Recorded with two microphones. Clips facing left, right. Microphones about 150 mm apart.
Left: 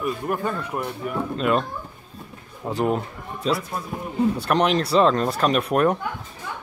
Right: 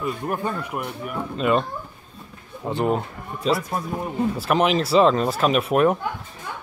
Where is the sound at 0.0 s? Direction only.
20° right (ahead or behind); by 5.9 s 5° right (ahead or behind).